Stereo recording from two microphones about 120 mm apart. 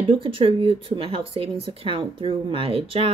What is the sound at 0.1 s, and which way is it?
Speech, 45° right (ahead or behind).